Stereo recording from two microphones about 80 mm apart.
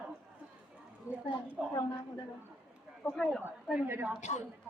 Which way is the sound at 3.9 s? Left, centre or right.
Right.